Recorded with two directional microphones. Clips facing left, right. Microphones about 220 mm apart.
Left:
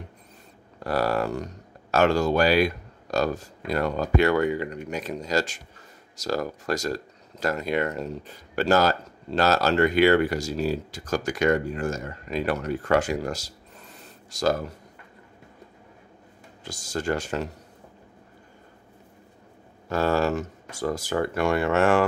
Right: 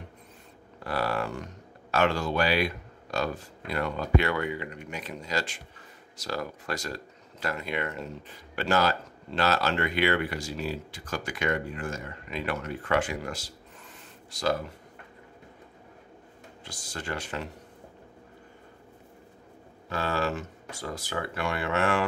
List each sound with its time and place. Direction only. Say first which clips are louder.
0.7 s speech: left 5 dB; 40° left (ahead or behind)
16.6 s speech: left 9 dB; 45° left (ahead or behind)
19.9 s speech: left 7 dB; 45° left (ahead or behind)